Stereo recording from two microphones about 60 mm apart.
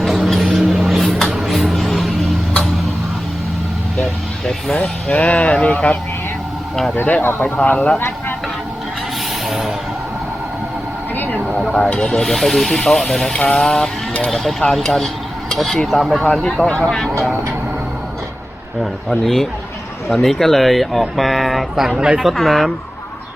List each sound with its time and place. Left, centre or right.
0.0 s vehicle: centre
1.2 s music: centre
4.8 s speech: left
9.5 s vehicle: centre
11.1 s vehicle: left
11.7 s speech: centre
16.6 s speech: centre
19.2 s speech: centre